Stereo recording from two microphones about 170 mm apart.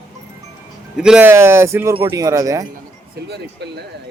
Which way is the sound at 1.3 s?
15° right (ahead or behind).